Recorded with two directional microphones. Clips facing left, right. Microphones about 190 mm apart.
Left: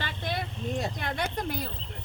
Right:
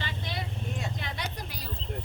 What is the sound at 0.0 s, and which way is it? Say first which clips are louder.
Vehicle: left 3 dB; 55° left (ahead or behind).